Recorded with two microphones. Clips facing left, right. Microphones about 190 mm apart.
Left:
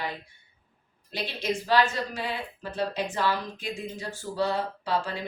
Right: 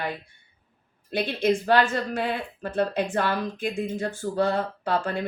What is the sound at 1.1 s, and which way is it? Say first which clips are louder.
Speech: right 7 dB; 55° right (ahead or behind).